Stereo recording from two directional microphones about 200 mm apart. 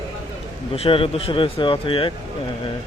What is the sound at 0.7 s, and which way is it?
Speech, 30° left (ahead or behind).